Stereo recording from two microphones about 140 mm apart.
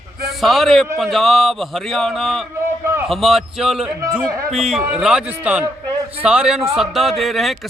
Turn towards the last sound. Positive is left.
turn(degrees=0)  # may be behind; listen again after turning